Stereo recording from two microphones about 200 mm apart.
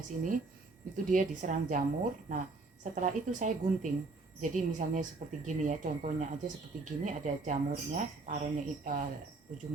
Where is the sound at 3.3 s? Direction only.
40° right (ahead or behind).